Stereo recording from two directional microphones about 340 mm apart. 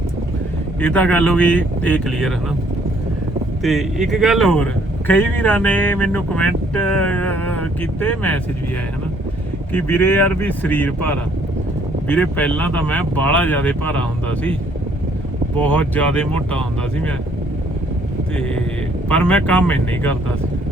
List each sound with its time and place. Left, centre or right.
0.8 s speech: centre
3.6 s speech: centre
9.7 s speech: centre
15.5 s speech: centre
19.0 s speech: centre